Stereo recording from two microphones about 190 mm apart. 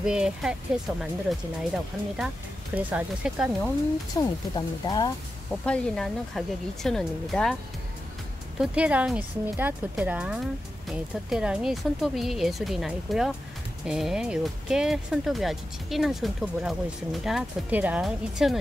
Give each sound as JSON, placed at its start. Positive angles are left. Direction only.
{"t": 0.0, "sound": "speech", "side_deg": -5}
{"t": 4.2, "sound": "speech", "side_deg": 20}
{"t": 5.5, "sound": "speech", "side_deg": 5}
{"t": 8.5, "sound": "speech", "side_deg": -5}